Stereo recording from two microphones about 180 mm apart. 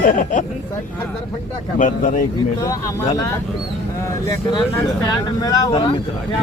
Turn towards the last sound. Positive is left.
turn(degrees=20)  # may be behind; listen again after turning